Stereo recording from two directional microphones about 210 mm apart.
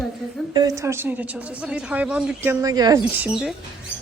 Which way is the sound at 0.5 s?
15° right (ahead or behind).